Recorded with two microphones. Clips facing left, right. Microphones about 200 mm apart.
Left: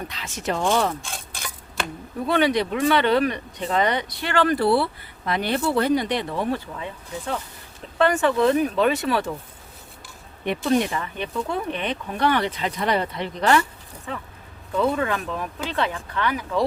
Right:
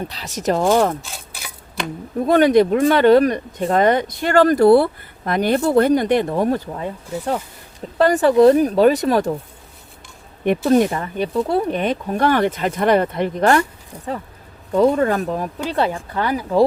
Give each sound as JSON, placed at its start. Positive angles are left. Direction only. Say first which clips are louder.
{"t": 0.1, "sound": "speech", "louder": "right 8 dB", "side_deg": -40}
{"t": 1.0, "sound": "stir", "louder": "even", "side_deg": -5}
{"t": 2.2, "sound": "speech", "louder": "right 8 dB", "side_deg": -45}
{"t": 10.7, "sound": "speech", "louder": "right 5 dB", "side_deg": -45}